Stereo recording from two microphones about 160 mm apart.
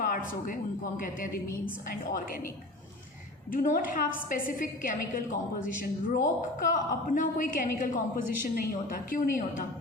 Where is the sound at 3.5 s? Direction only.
60° left (ahead or behind).